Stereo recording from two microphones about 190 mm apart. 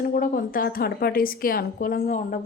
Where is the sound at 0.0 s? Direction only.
50° left (ahead or behind).